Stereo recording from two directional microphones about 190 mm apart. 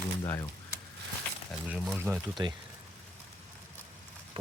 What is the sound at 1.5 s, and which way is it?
Speech, centre (ahead or behind).